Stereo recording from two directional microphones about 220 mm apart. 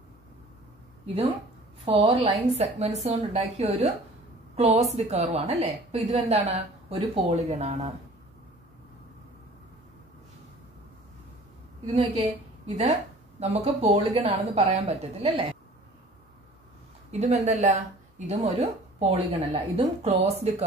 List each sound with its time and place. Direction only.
1.9 s speech: 30° right (ahead or behind)
11.9 s a woman's voice: 30° right (ahead or behind)
17.1 s speech: 30° right (ahead or behind)